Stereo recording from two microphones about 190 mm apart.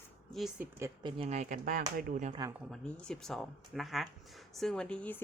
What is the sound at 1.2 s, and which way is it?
Speech, 40° right (ahead or behind).